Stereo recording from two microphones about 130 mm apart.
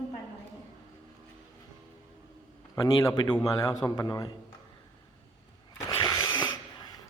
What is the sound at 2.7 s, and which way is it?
A man's voice, 30° left (ahead or behind).